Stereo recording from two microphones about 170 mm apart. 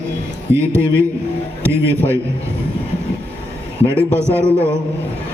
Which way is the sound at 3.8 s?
15° right (ahead or behind).